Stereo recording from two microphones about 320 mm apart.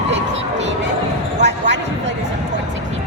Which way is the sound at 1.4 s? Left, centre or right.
Right.